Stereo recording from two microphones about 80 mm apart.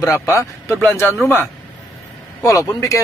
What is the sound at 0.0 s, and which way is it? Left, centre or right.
Speech, left.